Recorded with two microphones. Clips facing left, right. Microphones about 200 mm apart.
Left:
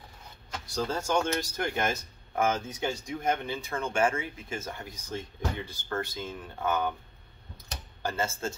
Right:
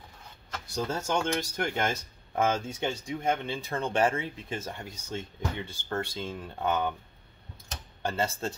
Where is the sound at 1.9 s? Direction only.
30° right (ahead or behind).